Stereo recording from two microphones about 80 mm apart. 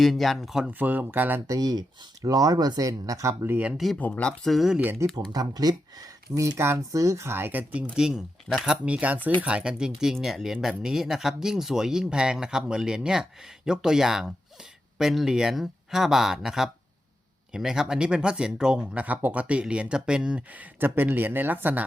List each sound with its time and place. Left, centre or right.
0.0 s speech: centre
0.7 s speech: right
1.5 s speech: right
3.9 s speech: centre
4.4 s speech: centre
5.3 s speech: right; by 7.9 s centre
7.9 s speech: centre